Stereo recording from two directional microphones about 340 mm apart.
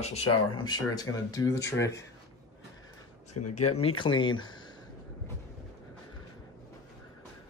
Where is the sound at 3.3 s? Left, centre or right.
Left.